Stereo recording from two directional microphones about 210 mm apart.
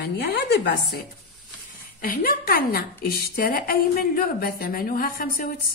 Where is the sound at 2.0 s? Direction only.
45° left (ahead or behind).